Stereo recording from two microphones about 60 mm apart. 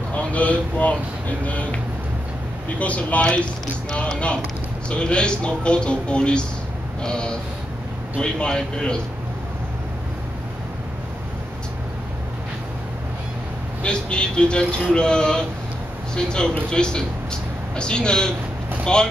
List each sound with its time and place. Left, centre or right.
0.1 s speech: left
2.8 s speech: left
13.8 s speech: centre